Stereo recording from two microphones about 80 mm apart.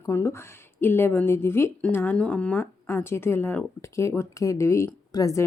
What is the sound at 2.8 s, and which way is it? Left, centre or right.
A woman's voice, left.